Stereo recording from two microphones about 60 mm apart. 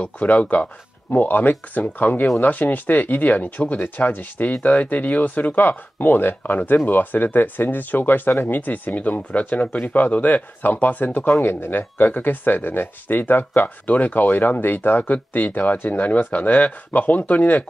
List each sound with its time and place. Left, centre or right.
0.0 s speech: left